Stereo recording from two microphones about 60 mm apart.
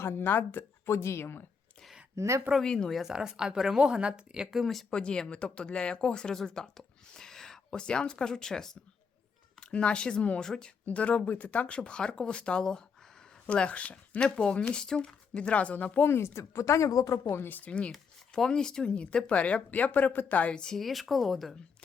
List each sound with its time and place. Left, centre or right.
0.0 s a woman's voice: left
2.1 s speech: right
2.6 s speech: centre
2.9 s speech: centre
4.6 s speech: centre
4.9 s speech: centre
16.0 s speech: left
17.3 s speech: left
17.6 s speech: centre
17.9 s speech: centre; by 20.5 s left
20.5 s speech: centre